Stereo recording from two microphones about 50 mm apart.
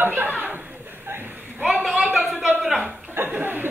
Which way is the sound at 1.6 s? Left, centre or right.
Centre.